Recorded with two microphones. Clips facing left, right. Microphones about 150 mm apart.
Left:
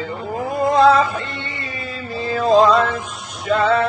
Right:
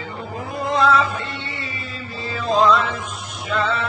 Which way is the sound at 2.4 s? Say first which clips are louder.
Left 4 dB; 50° left (ahead or behind).